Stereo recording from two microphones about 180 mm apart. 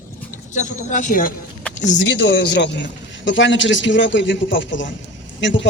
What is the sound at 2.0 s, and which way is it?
A man's voice, 80° left.